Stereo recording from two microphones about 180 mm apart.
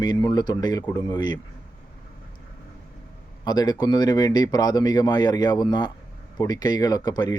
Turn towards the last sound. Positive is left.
turn(degrees=20)  # may be behind; listen again after turning